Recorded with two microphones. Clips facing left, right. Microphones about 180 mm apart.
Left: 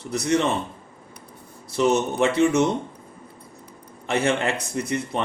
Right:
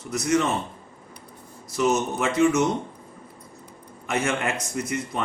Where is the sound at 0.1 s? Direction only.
30° left (ahead or behind).